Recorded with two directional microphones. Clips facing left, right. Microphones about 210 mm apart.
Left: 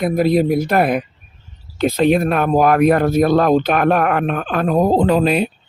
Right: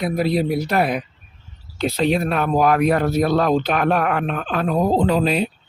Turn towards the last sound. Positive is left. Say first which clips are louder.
# left 3 dB
turn(degrees=60)  # may be behind; listen again after turning